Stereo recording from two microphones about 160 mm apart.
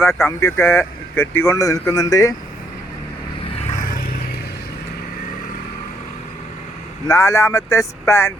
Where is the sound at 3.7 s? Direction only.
60° left (ahead or behind).